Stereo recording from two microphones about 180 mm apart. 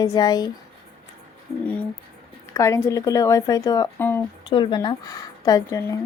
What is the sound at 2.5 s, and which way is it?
Speech, 15° left (ahead or behind).